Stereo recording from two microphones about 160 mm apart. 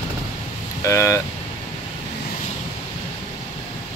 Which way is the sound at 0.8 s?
20° left (ahead or behind).